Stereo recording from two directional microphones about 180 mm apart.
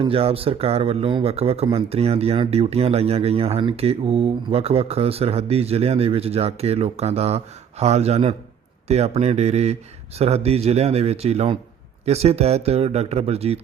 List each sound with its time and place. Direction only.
0.0 s speech: 30° right (ahead or behind)